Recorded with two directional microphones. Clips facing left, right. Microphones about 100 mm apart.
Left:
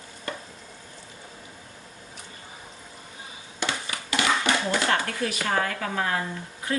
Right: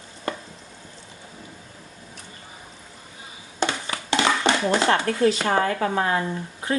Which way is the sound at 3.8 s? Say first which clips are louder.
Right 2 dB; 25° right (ahead or behind).